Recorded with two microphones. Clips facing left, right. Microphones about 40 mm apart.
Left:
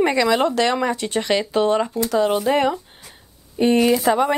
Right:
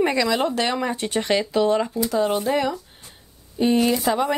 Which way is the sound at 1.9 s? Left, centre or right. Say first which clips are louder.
Left 2 dB; left.